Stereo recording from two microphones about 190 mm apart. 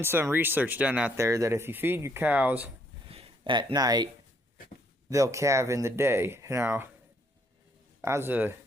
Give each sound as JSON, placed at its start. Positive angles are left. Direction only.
{"t": 0.0, "sound": "speech", "side_deg": -10}
{"t": 3.1, "sound": "speech", "side_deg": -30}
{"t": 8.0, "sound": "speech", "side_deg": -15}